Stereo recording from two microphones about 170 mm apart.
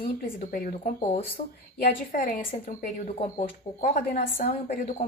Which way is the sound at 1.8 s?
55° left (ahead or behind).